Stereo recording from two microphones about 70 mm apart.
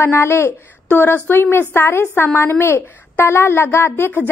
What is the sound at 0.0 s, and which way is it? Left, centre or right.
A woman's voice, left.